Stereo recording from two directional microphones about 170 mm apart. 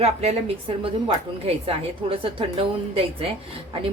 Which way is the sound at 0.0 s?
40° right (ahead or behind).